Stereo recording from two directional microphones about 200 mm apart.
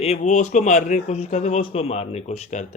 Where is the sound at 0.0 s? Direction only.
35° left (ahead or behind).